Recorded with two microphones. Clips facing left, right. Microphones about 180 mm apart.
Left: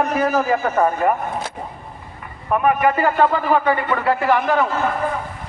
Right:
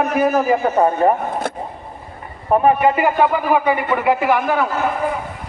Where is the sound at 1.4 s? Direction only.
60° right (ahead or behind).